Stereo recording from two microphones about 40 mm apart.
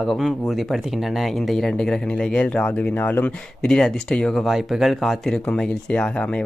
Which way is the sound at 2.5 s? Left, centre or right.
Left.